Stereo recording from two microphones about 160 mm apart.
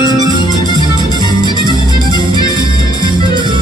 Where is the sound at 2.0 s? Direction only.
30° right (ahead or behind).